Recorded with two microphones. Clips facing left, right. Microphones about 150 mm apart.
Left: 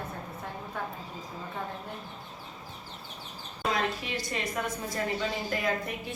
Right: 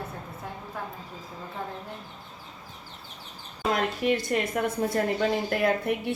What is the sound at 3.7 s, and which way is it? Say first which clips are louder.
A woman's voice: right 6 dB; 55° right (ahead or behind).